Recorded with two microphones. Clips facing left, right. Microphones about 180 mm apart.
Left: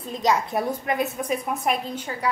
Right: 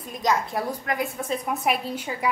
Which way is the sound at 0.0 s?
20° left (ahead or behind).